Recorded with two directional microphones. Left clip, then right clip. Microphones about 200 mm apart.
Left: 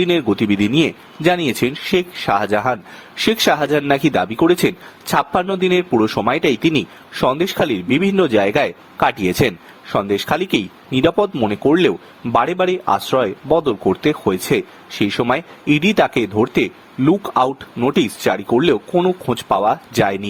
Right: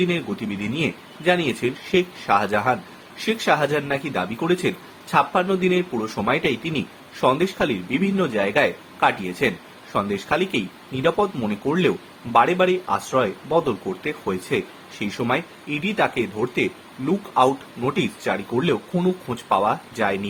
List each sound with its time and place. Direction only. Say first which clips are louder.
0.0 s speech: left 8 dB; 50° left (ahead or behind)